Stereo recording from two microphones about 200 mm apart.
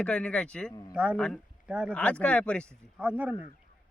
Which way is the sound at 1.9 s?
5° left (ahead or behind).